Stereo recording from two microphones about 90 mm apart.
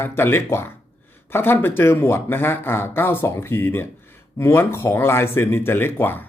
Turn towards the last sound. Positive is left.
turn(degrees=25)  # may be behind; listen again after turning